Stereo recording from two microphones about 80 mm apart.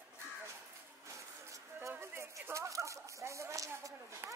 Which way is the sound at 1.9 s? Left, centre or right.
Right.